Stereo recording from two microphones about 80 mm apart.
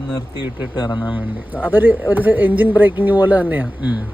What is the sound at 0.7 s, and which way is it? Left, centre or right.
Speech, left.